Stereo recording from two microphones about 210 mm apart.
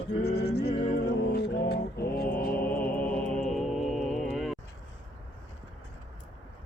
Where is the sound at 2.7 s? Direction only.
5° left (ahead or behind).